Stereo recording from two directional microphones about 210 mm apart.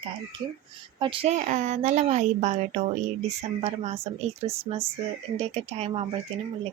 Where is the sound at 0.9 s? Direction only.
25° right (ahead or behind).